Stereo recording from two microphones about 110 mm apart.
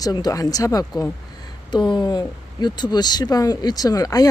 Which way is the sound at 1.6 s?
45° left (ahead or behind).